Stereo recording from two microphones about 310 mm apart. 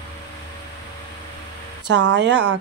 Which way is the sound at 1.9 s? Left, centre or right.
Right.